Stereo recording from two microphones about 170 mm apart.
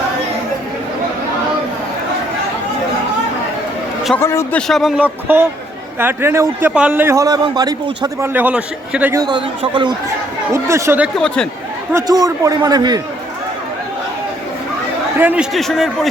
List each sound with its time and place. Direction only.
4.2 s a man's voice: 15° left (ahead or behind)
4.7 s a man's voice: centre (ahead or behind); by 8.3 s 20° right (ahead or behind)
8.3 s a man's voice: 10° right (ahead or behind)
9.2 s a man's voice: 25° right (ahead or behind)
10.5 s a man's voice: 15° right (ahead or behind)
15.2 s a man's voice: 10° right (ahead or behind)
15.5 s a man's voice: centre (ahead or behind)